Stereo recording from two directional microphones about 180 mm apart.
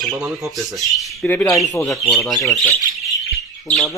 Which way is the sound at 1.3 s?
10° left (ahead or behind).